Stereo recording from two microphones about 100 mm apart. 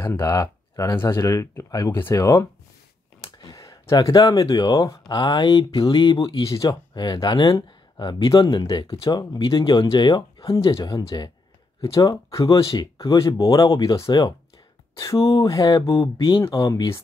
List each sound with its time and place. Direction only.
0.0 s speech: 25° left (ahead or behind)
0.4 s speech: 35° left (ahead or behind)
3.3 s speech: 40° left (ahead or behind)
5.1 s speech: 50° left (ahead or behind)
5.6 s speech: 65° left (ahead or behind)
6.0 s speech: 35° left (ahead or behind)
6.9 s speech: 45° left (ahead or behind)
8.8 s speech: 70° left (ahead or behind)
9.1 s speech: 40° left (ahead or behind)
10.6 s speech: 60° left (ahead or behind)
11.1 s speech: 45° left (ahead or behind)
11.8 s speech: 35° left (ahead or behind)
16.4 s speech: 45° left (ahead or behind)